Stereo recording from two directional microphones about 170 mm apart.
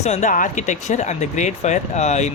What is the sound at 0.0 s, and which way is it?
Speech, 45° left (ahead or behind).